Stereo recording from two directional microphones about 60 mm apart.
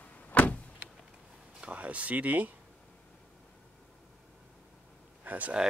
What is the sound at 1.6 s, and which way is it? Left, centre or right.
Speech, right.